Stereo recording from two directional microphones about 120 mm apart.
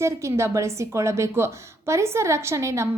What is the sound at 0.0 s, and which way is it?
Speech, 25° right (ahead or behind).